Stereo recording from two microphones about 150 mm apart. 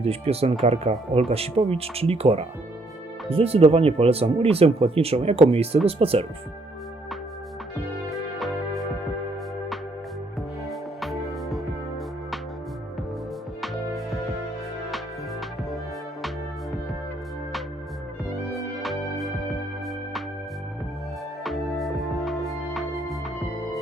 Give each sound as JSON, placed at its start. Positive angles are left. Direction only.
{"t": 0.0, "sound": "speech", "side_deg": -40}
{"t": 8.4, "sound": "music", "side_deg": 0}
{"t": 10.7, "sound": "music", "side_deg": 0}
{"t": 13.6, "sound": "music", "side_deg": 0}
{"t": 18.5, "sound": "music", "side_deg": 0}
{"t": 21.4, "sound": "music", "side_deg": 0}